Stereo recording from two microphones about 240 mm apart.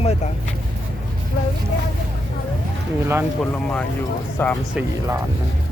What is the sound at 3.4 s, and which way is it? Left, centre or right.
Speech, centre.